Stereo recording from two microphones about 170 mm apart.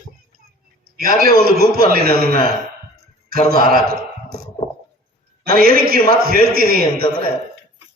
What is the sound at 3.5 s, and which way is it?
Speech, 60° right (ahead or behind).